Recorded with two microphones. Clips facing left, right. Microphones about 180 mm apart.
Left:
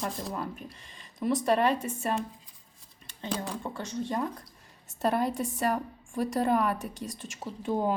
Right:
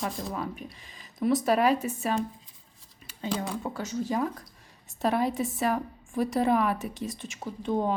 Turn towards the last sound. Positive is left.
turn(degrees=5)  # may be behind; listen again after turning